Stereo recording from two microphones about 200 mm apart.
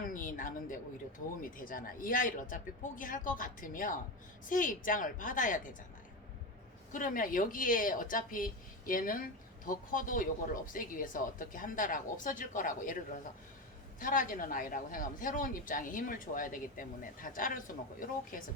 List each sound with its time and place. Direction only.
0.0 s speech: 40° left (ahead or behind)
6.9 s speech: 45° left (ahead or behind)
14.0 s speech: 45° left (ahead or behind)